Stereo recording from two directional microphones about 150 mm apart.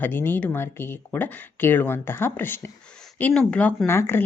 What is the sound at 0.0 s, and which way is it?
Speech, 15° left (ahead or behind).